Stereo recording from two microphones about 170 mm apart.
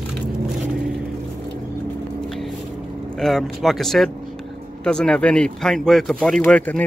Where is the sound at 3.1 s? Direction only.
Centre (ahead or behind).